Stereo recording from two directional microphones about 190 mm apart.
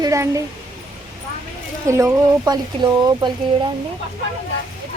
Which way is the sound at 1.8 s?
15° right (ahead or behind).